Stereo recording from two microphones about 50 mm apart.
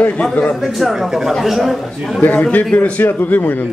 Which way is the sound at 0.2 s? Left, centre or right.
Left.